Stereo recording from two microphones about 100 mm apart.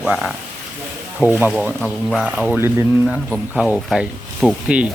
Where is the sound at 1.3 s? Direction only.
20° right (ahead or behind).